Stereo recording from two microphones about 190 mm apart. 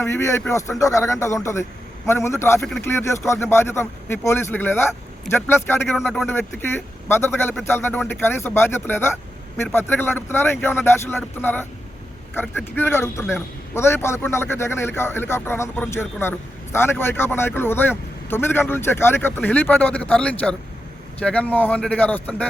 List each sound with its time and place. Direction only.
0.0 s a man's voice: 15° left (ahead or behind)
2.6 s speech: centre (ahead or behind)
2.8 s a man's voice: 15° left (ahead or behind)